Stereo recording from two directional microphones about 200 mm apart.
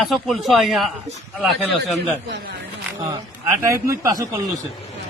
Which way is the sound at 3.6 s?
15° right (ahead or behind).